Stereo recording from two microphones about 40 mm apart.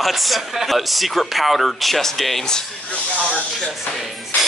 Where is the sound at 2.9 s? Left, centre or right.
Left.